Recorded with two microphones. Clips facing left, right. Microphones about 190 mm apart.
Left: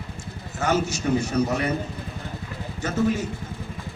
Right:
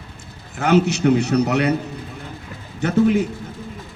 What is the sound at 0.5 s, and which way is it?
A man's voice, 65° right (ahead or behind).